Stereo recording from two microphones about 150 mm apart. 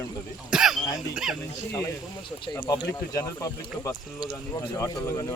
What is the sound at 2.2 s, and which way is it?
Speech, 35° left (ahead or behind).